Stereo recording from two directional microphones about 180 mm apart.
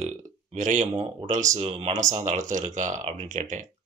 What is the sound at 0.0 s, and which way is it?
A man's voice, 40° right (ahead or behind).